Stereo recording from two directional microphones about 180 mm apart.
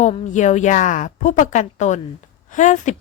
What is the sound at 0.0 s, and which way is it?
A woman's voice, 40° left (ahead or behind).